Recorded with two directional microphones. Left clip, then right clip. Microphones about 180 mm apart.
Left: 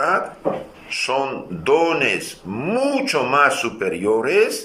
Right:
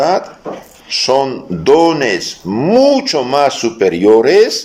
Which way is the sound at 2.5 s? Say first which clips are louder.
Right 11 dB; 25° right (ahead or behind).